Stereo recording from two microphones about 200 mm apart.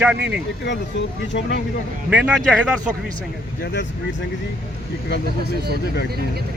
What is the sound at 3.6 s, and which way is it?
Speech, 60° left (ahead or behind).